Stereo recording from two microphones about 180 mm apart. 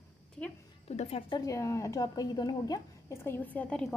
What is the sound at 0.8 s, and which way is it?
Speech, 35° left (ahead or behind).